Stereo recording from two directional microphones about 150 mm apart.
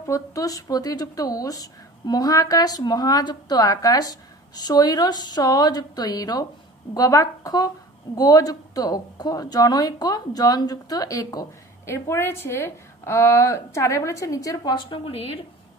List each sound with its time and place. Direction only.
0.0 s a woman's voice: 20° left (ahead or behind); by 15.4 s 40° left (ahead or behind)